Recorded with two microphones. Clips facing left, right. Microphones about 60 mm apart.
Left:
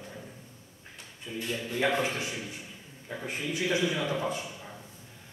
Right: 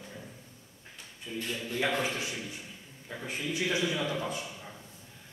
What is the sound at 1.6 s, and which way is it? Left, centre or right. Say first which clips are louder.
Speech: left 3 dB; centre.